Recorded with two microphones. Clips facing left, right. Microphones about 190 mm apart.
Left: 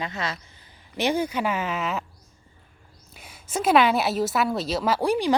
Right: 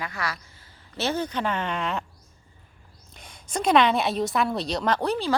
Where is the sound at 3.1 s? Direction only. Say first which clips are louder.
Left 1 dB; 5° left (ahead or behind).